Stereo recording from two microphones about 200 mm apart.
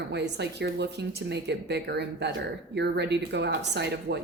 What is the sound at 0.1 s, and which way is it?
A woman's voice, 55° right (ahead or behind).